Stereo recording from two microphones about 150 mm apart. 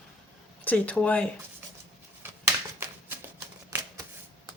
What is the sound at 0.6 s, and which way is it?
Speech, 10° left (ahead or behind).